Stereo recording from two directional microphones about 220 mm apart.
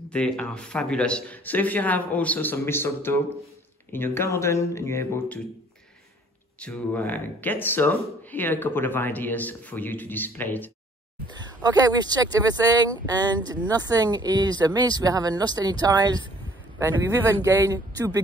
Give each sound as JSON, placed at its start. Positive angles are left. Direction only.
{"t": 0.1, "sound": "speech", "side_deg": 5}
{"t": 6.6, "sound": "speech", "side_deg": 5}
{"t": 11.2, "sound": "speech", "side_deg": -20}